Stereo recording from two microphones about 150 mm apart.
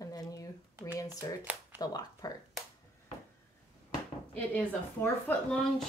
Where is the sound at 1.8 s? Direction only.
25° left (ahead or behind).